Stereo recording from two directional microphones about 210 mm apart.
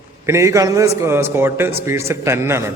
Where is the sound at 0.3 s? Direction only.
15° right (ahead or behind).